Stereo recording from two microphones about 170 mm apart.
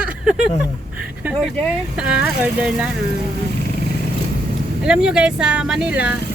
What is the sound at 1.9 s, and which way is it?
Speech, 5° right (ahead or behind).